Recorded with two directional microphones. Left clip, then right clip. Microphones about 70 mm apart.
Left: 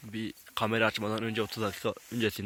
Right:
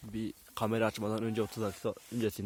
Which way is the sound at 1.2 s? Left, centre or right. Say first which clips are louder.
Left 2 dB; right.